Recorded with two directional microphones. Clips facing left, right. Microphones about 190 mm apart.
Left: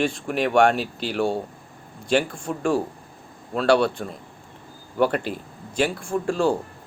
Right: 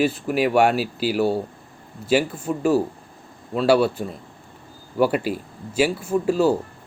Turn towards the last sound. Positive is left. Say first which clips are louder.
# right 3 dB
turn(degrees=-5)  # may be behind; listen again after turning